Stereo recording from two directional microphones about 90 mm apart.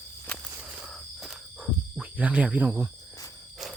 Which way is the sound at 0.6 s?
15° right (ahead or behind).